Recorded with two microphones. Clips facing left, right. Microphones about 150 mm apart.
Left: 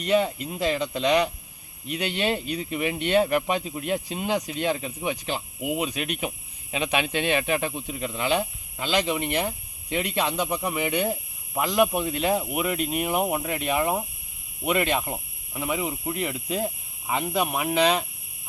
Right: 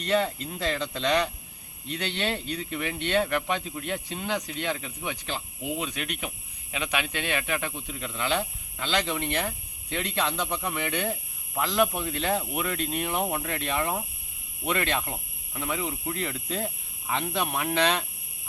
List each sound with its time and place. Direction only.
0.0 s speech: 10° left (ahead or behind)